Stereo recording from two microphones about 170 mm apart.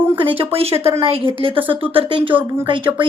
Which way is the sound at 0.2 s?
30° right (ahead or behind).